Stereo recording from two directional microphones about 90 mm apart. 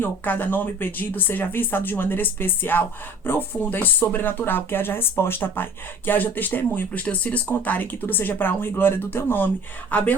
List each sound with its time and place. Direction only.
0.0 s speech: 20° left (ahead or behind)